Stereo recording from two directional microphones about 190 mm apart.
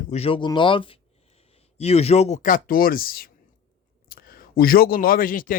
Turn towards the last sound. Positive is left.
turn(degrees=45)  # may be behind; listen again after turning